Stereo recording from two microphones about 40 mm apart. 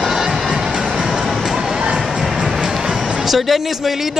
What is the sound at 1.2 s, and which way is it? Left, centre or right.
Vehicle, centre.